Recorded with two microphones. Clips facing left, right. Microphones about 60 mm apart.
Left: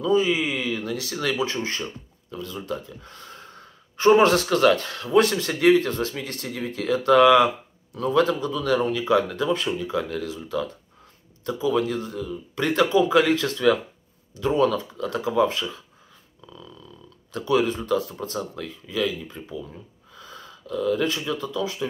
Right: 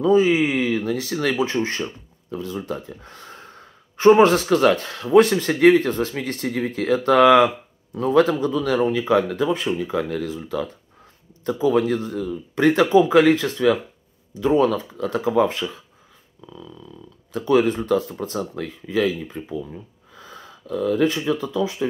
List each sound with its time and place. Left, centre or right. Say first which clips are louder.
0.0 s speech: right 5 dB; right
16.4 s dog: right 4 dB; centre
17.5 s speech: right 4 dB; right
18.1 s speech: right 3 dB; right